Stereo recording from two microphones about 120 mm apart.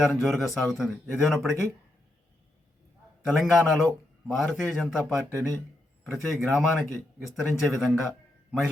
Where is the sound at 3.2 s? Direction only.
Centre (ahead or behind).